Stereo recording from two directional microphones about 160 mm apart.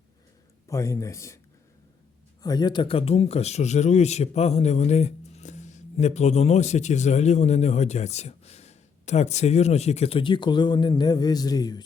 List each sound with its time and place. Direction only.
0.7 s a man's voice: 20° left (ahead or behind)
2.4 s speech: 25° left (ahead or behind)